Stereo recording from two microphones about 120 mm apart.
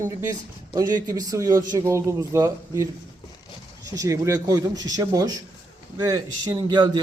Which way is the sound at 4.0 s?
25° right (ahead or behind).